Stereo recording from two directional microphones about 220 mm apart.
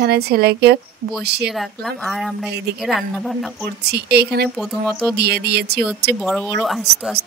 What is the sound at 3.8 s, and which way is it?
Speech, 45° right (ahead or behind).